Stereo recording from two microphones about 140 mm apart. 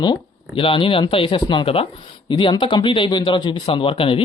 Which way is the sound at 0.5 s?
40° left (ahead or behind).